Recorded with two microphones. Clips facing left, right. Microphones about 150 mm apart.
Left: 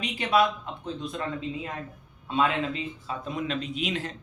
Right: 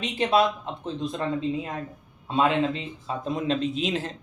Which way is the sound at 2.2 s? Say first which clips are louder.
Right 3 dB; 30° right (ahead or behind).